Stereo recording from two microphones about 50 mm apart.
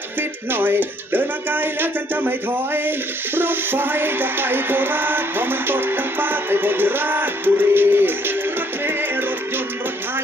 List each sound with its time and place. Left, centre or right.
0.5 s music: right